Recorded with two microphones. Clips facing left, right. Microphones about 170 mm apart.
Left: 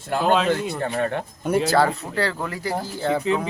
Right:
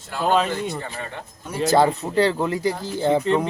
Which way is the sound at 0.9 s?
60° left (ahead or behind).